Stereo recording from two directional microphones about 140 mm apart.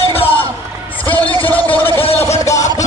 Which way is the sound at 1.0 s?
10° left (ahead or behind).